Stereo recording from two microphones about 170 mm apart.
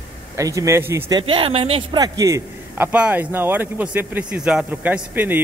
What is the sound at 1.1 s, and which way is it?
Speech, 30° right (ahead or behind).